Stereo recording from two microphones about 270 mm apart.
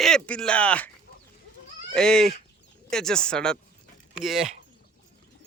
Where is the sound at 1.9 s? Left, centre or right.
Centre.